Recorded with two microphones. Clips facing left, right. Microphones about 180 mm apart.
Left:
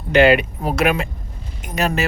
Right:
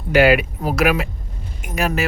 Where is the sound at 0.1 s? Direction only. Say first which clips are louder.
Left 1 dB; 5° right (ahead or behind).